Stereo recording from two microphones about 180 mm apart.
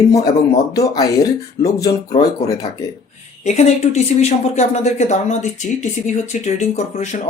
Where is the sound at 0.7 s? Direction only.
20° left (ahead or behind).